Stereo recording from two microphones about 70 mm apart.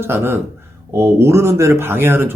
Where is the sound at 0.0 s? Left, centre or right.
Right.